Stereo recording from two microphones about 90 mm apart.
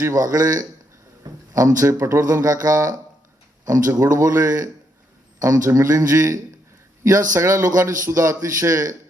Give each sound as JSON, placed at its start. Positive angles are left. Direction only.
{"t": 0.0, "sound": "speech", "side_deg": -40}